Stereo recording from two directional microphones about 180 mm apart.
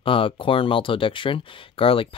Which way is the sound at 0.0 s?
30° left (ahead or behind).